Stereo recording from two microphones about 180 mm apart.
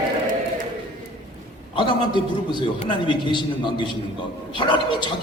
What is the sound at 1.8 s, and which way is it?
A man's voice, 25° left (ahead or behind).